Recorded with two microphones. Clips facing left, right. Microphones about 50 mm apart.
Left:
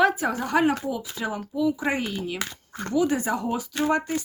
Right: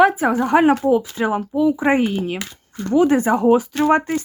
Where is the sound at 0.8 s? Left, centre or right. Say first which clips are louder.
Right 12 dB; right.